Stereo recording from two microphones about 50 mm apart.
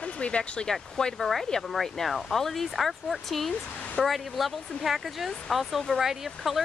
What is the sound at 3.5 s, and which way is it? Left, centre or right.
Speech, left.